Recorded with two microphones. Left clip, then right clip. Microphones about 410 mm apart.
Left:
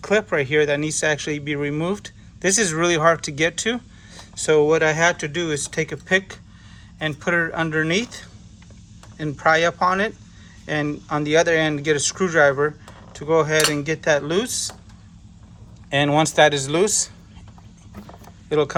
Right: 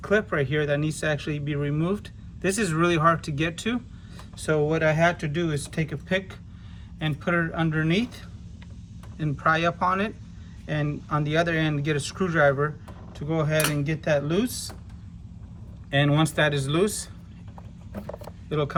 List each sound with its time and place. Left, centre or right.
0.0 s speech: centre
15.9 s speech: centre
18.4 s speech: centre